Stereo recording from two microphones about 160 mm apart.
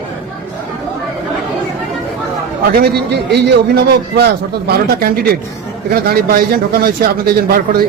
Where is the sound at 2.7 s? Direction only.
80° right.